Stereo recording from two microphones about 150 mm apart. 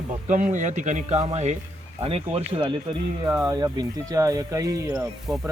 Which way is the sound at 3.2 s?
25° right (ahead or behind).